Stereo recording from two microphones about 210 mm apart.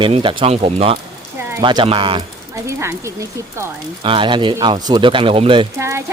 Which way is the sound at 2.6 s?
15° right (ahead or behind).